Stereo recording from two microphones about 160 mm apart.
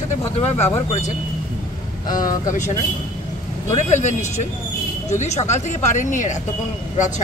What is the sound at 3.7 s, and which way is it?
Speech, 45° left (ahead or behind).